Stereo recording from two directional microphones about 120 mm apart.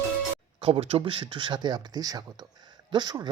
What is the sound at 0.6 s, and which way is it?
Speech, 50° right (ahead or behind).